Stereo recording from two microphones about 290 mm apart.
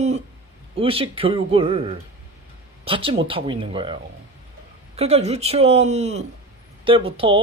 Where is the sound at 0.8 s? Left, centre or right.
Centre.